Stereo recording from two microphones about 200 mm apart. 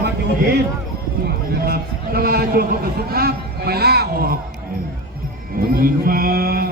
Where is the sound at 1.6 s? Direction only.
50° right (ahead or behind).